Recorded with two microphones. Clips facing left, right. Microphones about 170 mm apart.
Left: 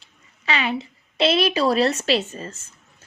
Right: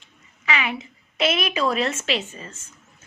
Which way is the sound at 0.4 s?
30° left (ahead or behind).